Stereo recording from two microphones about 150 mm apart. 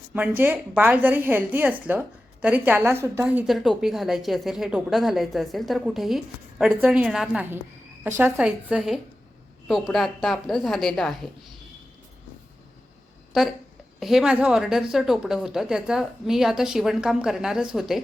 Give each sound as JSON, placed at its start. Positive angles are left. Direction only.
{"t": 0.1, "sound": "a woman's voice", "side_deg": -10}
{"t": 8.0, "sound": "a woman's voice", "side_deg": -15}
{"t": 14.0, "sound": "a woman's voice", "side_deg": -5}